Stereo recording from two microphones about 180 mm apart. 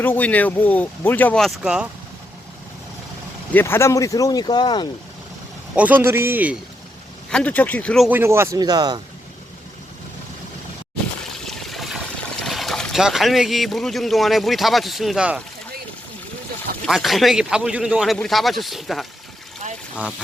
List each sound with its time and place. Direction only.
0.0 s speech: 10° left (ahead or behind)
3.5 s speech: 15° left (ahead or behind)
5.7 s a man's voice: 10° right (ahead or behind)
7.3 s speech: 5° left (ahead or behind)
8.1 s a man's voice: 15° right (ahead or behind)
11.4 s trickle: centre (ahead or behind)
12.4 s speech: centre (ahead or behind)
16.8 s a man's voice: centre (ahead or behind)